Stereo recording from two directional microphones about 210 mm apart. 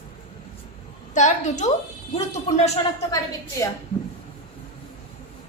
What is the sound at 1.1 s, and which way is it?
A woman's voice, 35° left (ahead or behind).